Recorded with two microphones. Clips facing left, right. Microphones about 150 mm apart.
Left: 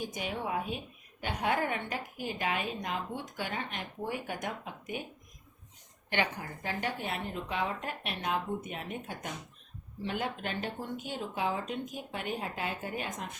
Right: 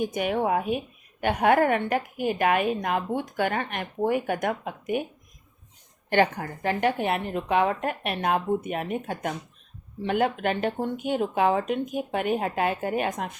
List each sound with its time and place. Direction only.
0.0 s a woman's voice: 60° right (ahead or behind)
6.4 s a woman's voice: 65° right (ahead or behind)